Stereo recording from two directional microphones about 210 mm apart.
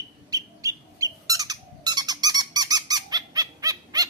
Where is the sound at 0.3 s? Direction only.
15° right (ahead or behind).